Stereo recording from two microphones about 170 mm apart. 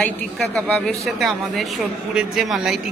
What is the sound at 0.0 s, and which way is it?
A woman's voice, 5° left (ahead or behind).